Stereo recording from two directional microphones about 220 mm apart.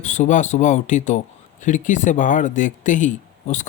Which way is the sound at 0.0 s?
30° left (ahead or behind).